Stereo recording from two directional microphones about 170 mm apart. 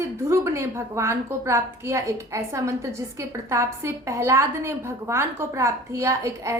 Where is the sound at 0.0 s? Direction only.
15° right (ahead or behind).